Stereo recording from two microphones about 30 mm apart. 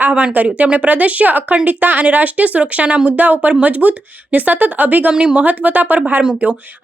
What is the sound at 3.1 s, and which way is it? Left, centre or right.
Speech, right.